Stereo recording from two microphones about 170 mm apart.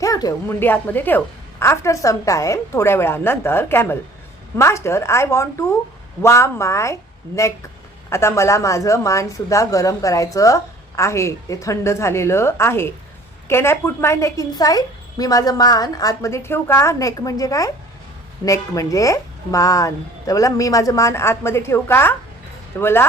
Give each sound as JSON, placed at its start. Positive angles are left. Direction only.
{"t": 0.0, "sound": "a woman's voice", "side_deg": 20}
{"t": 8.1, "sound": "a woman's voice", "side_deg": 15}